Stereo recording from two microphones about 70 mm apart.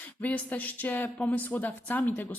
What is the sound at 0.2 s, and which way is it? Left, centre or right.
Speech, left.